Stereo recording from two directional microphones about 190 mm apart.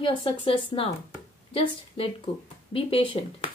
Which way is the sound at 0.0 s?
30° left (ahead or behind).